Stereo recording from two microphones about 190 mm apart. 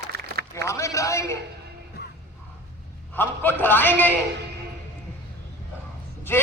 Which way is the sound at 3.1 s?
10° left (ahead or behind).